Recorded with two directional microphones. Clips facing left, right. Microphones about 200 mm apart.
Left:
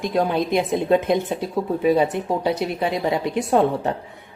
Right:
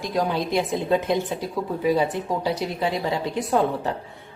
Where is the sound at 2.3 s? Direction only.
20° left (ahead or behind).